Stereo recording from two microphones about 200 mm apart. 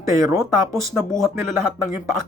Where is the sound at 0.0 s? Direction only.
15° right (ahead or behind).